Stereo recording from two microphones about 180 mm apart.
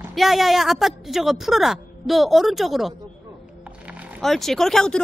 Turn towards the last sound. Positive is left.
turn(degrees=5)  # may be behind; listen again after turning